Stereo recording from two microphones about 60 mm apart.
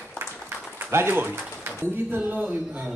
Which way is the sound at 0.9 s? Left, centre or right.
Right.